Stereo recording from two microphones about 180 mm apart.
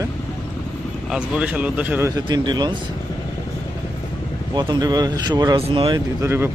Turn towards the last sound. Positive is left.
turn(degrees=-15)  # may be behind; listen again after turning